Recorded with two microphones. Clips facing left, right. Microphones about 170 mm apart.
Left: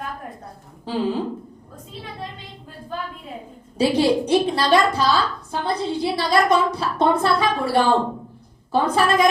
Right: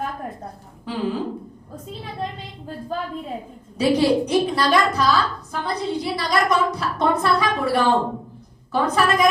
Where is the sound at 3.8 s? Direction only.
30° left (ahead or behind).